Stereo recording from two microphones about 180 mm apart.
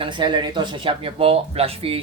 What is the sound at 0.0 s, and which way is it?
Speech, 25° right (ahead or behind).